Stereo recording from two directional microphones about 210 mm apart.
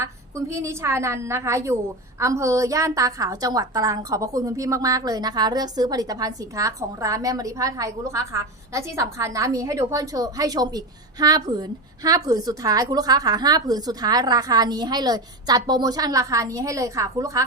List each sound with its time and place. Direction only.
0.0 s a woman's voice: 15° right (ahead or behind)